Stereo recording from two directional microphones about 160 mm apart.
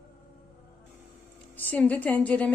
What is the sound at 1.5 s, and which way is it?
Speech, 10° left (ahead or behind).